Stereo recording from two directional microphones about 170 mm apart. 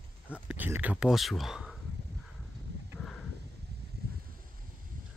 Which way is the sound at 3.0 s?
5° left (ahead or behind).